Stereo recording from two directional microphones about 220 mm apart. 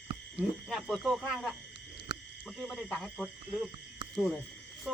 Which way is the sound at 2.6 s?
5° left (ahead or behind).